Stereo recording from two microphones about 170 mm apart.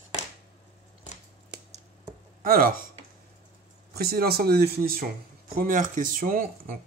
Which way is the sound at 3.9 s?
65° right (ahead or behind).